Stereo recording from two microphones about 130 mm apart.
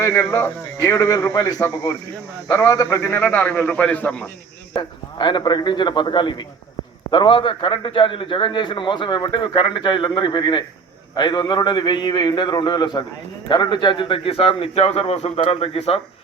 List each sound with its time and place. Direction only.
0.0 s a man's voice: 20° left (ahead or behind)
4.7 s a man's voice: 35° left (ahead or behind)